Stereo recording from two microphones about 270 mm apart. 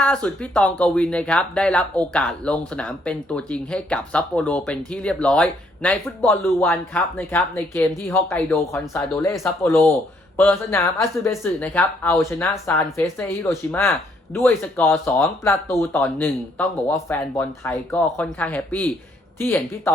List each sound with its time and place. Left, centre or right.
0.0 s speech: centre